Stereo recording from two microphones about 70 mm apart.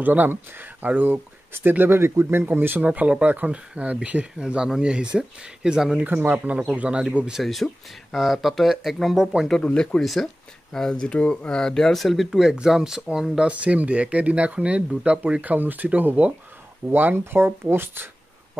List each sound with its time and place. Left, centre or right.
0.0 s speech: right
2.9 s speech: centre
5.9 s speech: right
7.3 s speech: centre
9.6 s speech: centre
10.0 s speech: centre; by 18.0 s right